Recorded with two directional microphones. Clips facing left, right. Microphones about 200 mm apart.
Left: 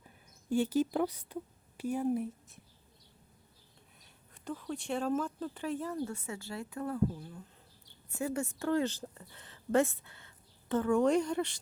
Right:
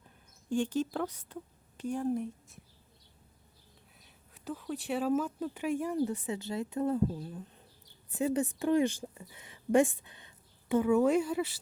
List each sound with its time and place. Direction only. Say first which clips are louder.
0.5 s speech: left 2 dB; 10° left (ahead or behind)
4.0 s a woman's voice: right 1 dB; 5° right (ahead or behind)